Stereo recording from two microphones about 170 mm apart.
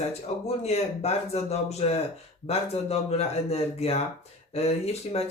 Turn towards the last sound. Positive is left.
turn(degrees=40)  # may be behind; listen again after turning